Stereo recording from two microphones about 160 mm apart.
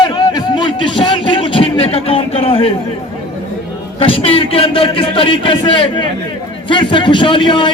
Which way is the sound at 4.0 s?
35° left (ahead or behind).